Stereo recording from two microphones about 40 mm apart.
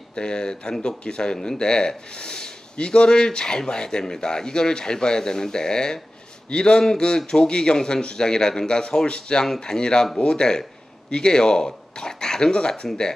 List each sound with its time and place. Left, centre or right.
0.1 s speech: left